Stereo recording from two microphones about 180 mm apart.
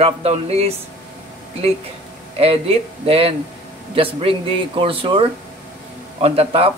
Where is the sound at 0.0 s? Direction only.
35° right (ahead or behind).